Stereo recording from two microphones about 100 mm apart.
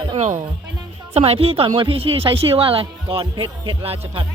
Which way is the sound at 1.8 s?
65° right (ahead or behind).